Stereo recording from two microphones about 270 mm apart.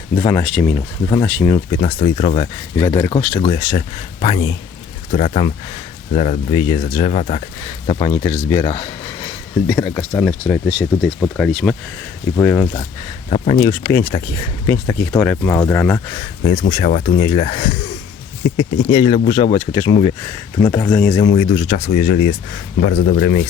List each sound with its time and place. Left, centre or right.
0.2 s speech: centre
2.7 s speech: centre
13.3 s speech: left
21.7 s speech: left
22.8 s speech: left